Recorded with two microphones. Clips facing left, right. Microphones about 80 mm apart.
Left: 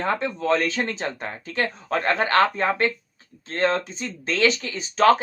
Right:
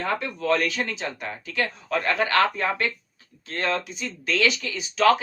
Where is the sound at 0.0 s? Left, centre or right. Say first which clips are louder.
Left 3 dB; left.